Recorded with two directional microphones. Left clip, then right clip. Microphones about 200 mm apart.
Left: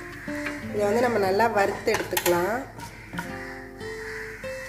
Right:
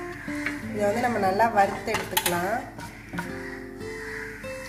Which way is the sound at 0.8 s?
50° left (ahead or behind).